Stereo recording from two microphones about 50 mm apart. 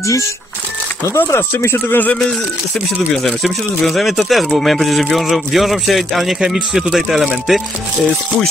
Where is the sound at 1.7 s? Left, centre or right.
Left.